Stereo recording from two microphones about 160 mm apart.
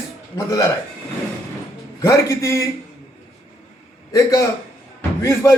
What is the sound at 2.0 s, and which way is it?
Speech, 20° left (ahead or behind).